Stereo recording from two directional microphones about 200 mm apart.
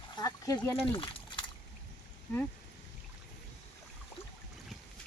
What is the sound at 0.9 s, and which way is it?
Liquid, 25° left (ahead or behind).